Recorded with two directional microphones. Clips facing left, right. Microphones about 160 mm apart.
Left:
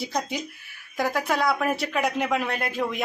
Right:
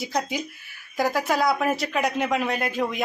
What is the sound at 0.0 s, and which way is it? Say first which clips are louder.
Speech: right 2 dB; 5° right (ahead or behind).